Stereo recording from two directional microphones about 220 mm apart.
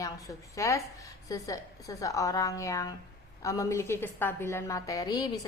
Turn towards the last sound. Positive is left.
turn(degrees=15)  # may be behind; listen again after turning